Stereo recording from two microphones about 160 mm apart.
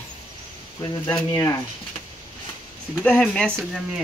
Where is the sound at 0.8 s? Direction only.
25° left (ahead or behind).